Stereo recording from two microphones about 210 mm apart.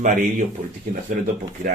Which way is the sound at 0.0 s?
35° right (ahead or behind).